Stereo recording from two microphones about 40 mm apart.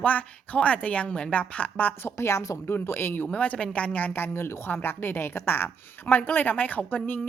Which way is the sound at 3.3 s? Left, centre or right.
Left.